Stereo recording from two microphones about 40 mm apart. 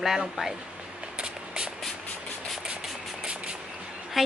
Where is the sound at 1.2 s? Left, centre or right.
Centre.